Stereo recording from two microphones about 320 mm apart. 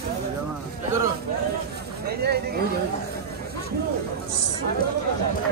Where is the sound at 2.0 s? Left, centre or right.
Right.